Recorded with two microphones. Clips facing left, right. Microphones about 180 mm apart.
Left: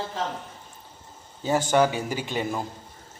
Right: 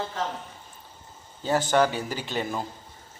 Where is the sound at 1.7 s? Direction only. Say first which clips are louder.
Left 2 dB; 10° left (ahead or behind).